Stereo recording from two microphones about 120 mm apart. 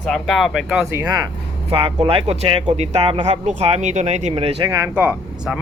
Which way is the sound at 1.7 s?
50° right (ahead or behind).